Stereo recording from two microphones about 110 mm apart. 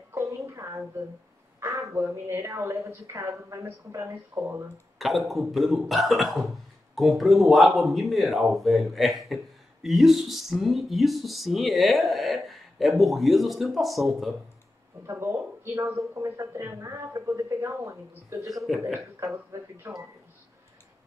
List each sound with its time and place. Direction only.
0.6 s a sound: 30° right (ahead or behind)
1.9 s speech: 25° right (ahead or behind)
4.9 s speech: centre (ahead or behind)
15.0 s speech: 25° right (ahead or behind)